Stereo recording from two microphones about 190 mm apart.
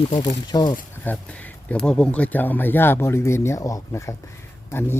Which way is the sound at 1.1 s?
10° left (ahead or behind).